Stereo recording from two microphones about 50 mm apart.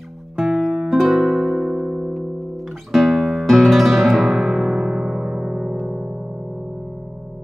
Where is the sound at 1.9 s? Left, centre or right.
Centre.